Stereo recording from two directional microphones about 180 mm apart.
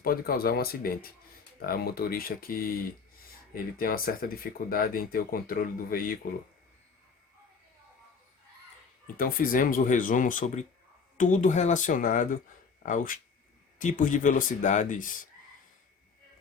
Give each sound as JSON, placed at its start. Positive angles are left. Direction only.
{"t": 0.0, "sound": "speech", "side_deg": 55}
{"t": 9.1, "sound": "speech", "side_deg": 55}